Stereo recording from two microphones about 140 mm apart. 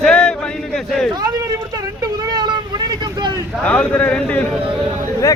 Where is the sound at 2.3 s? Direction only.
30° right (ahead or behind).